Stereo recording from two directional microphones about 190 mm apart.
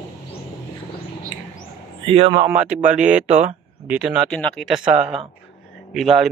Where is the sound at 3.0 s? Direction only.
40° right (ahead or behind).